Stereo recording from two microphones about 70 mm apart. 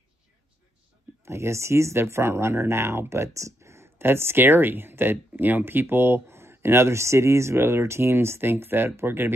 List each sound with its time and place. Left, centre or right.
1.2 s speech: right